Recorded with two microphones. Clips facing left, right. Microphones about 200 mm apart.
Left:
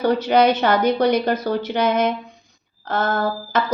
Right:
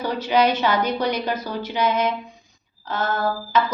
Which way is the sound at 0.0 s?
60° left (ahead or behind).